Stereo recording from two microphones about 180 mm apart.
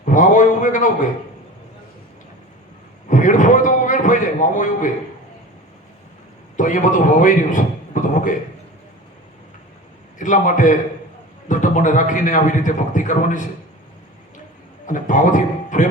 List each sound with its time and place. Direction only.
0.0 s a sound: 45° left (ahead or behind)
3.1 s a man's voice: 45° left (ahead or behind)
6.6 s a man's voice: 45° left (ahead or behind)
8.0 s a sound: 45° left (ahead or behind)
10.2 s a man's voice: 45° left (ahead or behind)
14.8 s a man's voice: 45° left (ahead or behind)